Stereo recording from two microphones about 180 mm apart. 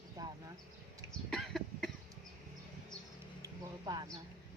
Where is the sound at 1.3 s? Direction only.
Centre (ahead or behind).